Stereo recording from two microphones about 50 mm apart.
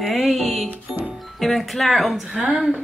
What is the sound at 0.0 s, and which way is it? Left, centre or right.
Music, centre.